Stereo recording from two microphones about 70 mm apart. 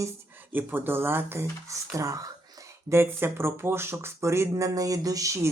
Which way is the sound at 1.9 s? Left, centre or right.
Right.